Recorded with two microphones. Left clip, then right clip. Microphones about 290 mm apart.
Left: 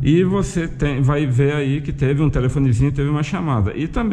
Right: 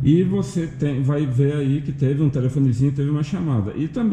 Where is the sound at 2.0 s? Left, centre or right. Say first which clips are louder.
Left 3 dB; centre.